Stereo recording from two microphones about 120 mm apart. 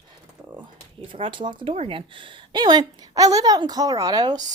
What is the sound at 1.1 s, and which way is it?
Speech, 45° right (ahead or behind).